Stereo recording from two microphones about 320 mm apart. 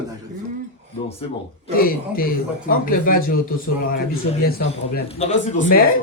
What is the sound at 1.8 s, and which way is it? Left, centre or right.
Speech, left.